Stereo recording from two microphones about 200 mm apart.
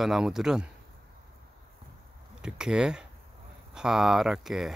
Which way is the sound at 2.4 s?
5° right (ahead or behind).